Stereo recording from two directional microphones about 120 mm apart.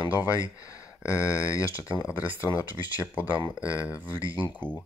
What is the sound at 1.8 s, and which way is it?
Speech, 10° right (ahead or behind).